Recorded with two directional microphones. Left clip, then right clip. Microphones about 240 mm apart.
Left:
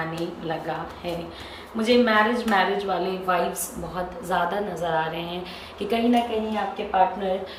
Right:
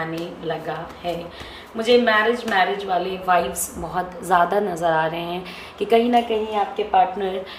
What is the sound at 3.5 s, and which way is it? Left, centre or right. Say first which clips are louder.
A woman's voice: right 5 dB; centre.